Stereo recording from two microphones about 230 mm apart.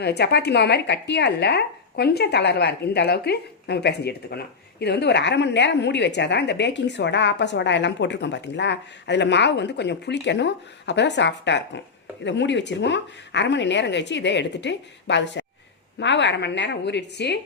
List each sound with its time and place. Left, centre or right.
0.0 s speech: left